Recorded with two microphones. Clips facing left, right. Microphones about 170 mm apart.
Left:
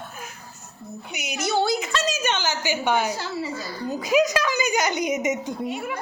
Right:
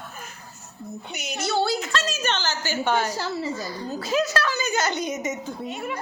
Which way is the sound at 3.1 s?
40° right (ahead or behind).